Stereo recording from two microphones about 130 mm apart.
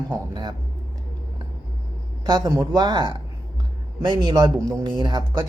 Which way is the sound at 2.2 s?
30° right (ahead or behind).